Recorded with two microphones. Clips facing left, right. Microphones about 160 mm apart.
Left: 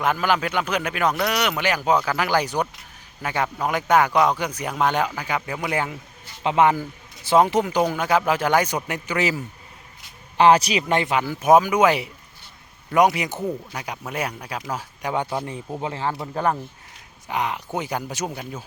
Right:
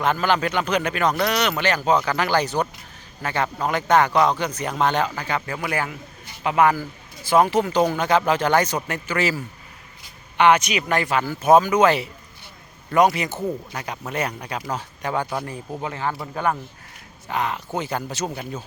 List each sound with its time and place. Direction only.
0.0 s speech: 10° left (ahead or behind)
10.3 s speech: 35° left (ahead or behind); by 12.1 s 10° left (ahead or behind)
13.1 s speech: 15° left (ahead or behind); by 16.6 s 30° left (ahead or behind)
17.2 s speech: 15° left (ahead or behind)